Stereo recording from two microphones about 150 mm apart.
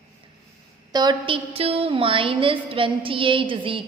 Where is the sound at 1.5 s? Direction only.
40° right (ahead or behind).